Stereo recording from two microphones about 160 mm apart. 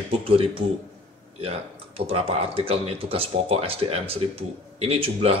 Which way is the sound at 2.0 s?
35° right (ahead or behind).